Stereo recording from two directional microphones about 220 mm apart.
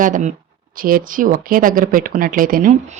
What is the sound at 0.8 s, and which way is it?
A woman's voice, 40° right (ahead or behind).